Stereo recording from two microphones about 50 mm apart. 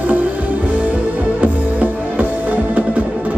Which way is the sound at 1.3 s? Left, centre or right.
Right.